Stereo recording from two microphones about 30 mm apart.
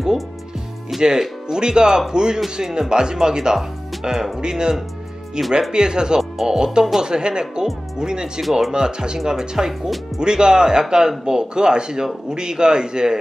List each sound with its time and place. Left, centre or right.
1.5 s speech: right
8.4 s speech: centre
8.7 s speech: right
9.7 s speech: centre
10.2 s speech: right